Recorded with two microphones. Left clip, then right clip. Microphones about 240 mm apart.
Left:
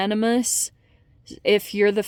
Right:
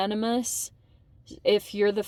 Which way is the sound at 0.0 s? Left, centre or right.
Left.